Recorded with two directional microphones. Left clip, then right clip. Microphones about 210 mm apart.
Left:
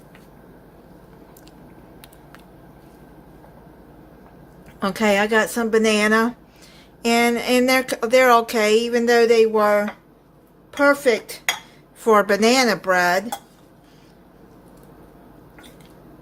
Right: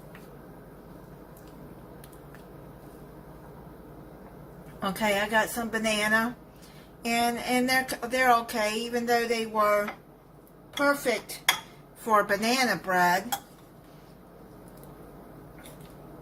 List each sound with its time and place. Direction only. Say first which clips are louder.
4.8 s a woman's voice: left 8 dB; 45° left (ahead or behind)